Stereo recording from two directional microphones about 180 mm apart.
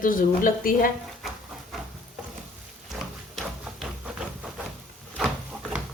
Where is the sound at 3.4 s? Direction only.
5° right (ahead or behind).